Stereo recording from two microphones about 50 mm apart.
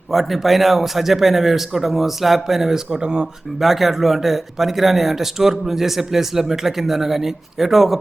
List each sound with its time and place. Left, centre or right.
0.1 s speech: centre
3.6 s speech: centre